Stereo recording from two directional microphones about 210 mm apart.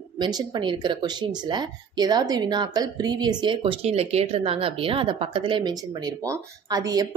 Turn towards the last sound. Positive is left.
turn(degrees=-15)  # may be behind; listen again after turning